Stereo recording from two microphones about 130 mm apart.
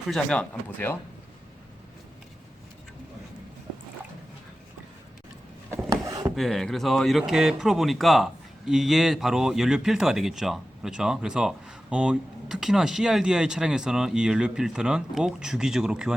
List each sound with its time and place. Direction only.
0.1 s speech: 10° left (ahead or behind)
5.7 s a sound: 25° right (ahead or behind)
6.3 s speech: centre (ahead or behind)